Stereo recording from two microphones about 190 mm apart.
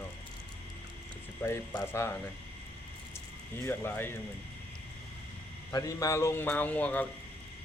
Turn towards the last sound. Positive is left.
turn(degrees=10)  # may be behind; listen again after turning